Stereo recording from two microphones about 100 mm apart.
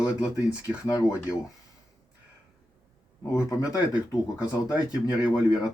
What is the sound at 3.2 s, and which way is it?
Speech, 30° left (ahead or behind).